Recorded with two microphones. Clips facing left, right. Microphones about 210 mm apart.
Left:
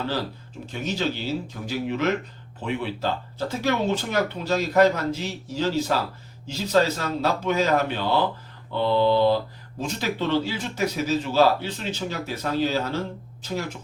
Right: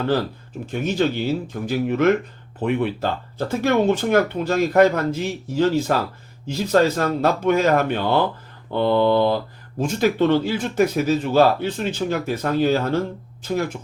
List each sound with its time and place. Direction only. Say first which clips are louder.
0.7 s speech: right 6 dB; 50° right (ahead or behind)
8.7 s mantra: right 3 dB; 55° right (ahead or behind)
9.8 s speech: right 8 dB; 50° right (ahead or behind)